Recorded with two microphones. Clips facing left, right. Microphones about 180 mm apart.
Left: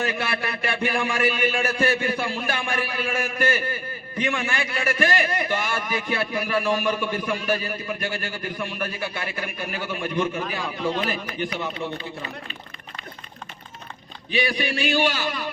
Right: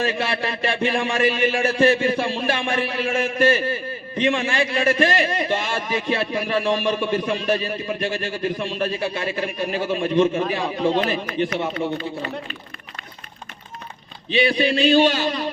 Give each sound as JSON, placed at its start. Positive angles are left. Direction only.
{"t": 0.0, "sound": "a man's voice", "side_deg": -25}
{"t": 14.3, "sound": "a man's voice", "side_deg": -25}